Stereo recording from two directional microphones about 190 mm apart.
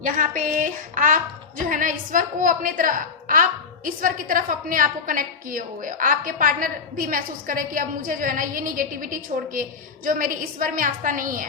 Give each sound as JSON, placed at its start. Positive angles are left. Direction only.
{"t": 0.0, "sound": "a woman's voice", "side_deg": -45}